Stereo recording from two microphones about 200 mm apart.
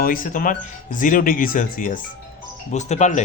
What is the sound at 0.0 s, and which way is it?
Speech, 45° left (ahead or behind).